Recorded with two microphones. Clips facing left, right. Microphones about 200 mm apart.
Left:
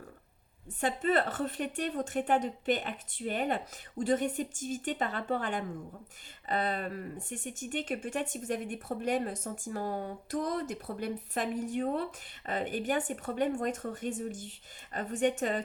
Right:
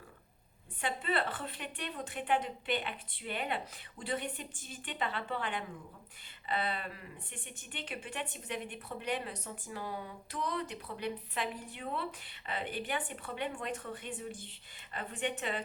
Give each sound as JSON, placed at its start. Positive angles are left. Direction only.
{"t": 0.8, "sound": "speech", "side_deg": 45}